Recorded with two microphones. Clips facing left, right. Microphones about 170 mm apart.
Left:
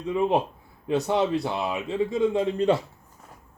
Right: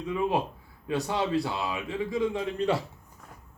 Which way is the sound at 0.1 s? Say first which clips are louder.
Left 5 dB; 25° left (ahead or behind).